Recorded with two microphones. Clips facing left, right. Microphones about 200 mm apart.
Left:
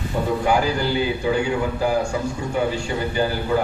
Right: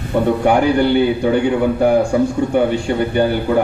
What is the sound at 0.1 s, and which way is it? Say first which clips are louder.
A man's voice: right 6 dB; 60° right (ahead or behind).